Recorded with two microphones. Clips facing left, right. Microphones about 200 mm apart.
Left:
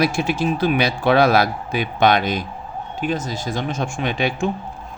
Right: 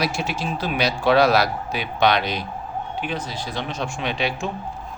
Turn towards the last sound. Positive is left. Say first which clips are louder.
# left 4 dB
turn(degrees=50)  # may be behind; listen again after turning